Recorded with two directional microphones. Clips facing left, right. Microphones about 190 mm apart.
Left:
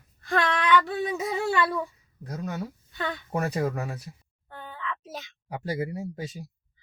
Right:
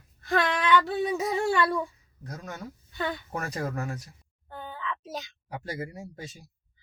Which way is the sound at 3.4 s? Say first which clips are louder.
Left 9 dB; 35° left (ahead or behind).